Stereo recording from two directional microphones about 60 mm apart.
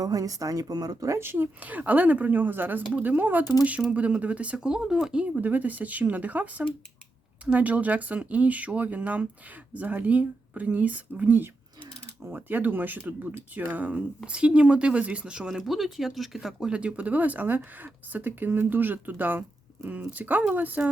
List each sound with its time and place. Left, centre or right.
0.0 s speech: right
1.1 s speech: right
1.6 s speech: right; by 16.7 s centre
16.7 s speech: right